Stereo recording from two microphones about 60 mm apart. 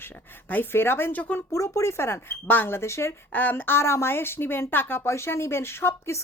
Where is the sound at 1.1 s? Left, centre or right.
Left.